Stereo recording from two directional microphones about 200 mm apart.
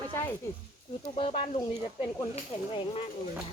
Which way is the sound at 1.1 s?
30° left (ahead or behind).